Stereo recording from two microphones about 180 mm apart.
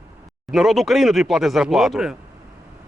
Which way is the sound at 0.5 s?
Centre (ahead or behind).